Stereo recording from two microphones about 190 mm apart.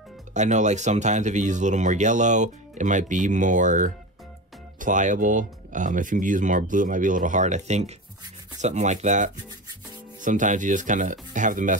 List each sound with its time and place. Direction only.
0.3 s speech: 40° right (ahead or behind)